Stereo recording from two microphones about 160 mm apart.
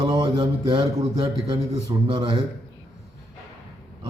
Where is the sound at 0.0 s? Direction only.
25° right (ahead or behind).